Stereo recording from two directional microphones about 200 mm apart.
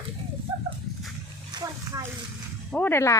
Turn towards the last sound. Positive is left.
turn(degrees=10)  # may be behind; listen again after turning